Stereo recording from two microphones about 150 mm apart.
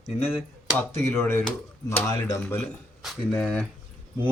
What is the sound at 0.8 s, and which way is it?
Speech, 15° left (ahead or behind).